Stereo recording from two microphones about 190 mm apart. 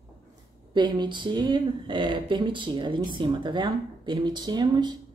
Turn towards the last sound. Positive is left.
turn(degrees=-20)  # may be behind; listen again after turning